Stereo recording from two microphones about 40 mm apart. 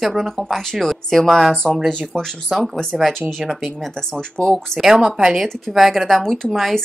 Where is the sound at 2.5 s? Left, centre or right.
Centre.